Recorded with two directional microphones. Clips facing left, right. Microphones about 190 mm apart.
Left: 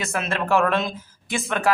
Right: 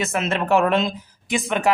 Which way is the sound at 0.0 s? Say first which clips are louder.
Right 3 dB; 20° right (ahead or behind).